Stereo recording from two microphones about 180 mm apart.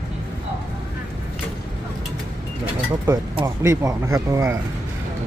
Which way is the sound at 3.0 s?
15° right (ahead or behind).